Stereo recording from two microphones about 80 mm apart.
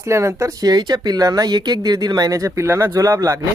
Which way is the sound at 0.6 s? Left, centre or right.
Right.